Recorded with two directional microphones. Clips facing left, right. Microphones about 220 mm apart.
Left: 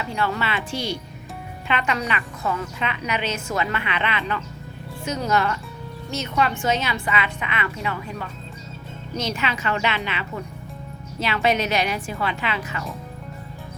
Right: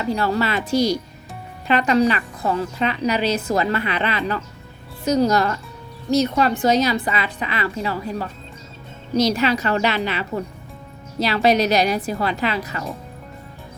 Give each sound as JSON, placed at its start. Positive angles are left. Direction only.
{"t": 0.0, "sound": "a woman's voice", "side_deg": -35}